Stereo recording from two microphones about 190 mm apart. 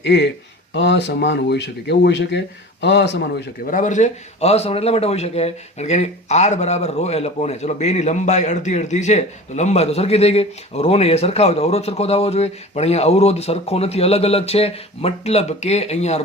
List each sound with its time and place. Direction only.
0.0 s a man's voice: 65° left (ahead or behind); by 16.2 s 35° left (ahead or behind)